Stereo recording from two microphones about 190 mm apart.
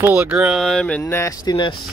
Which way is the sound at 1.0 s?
15° left (ahead or behind).